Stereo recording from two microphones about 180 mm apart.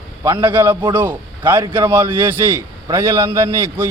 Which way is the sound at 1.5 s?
25° right (ahead or behind).